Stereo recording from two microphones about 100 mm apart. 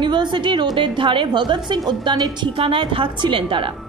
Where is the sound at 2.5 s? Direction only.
60° right (ahead or behind).